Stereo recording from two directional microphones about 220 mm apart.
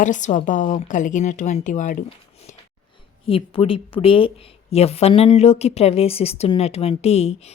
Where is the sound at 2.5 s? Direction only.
35° left (ahead or behind).